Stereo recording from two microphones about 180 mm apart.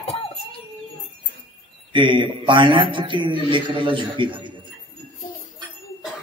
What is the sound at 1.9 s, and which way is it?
A man's voice, 25° right (ahead or behind).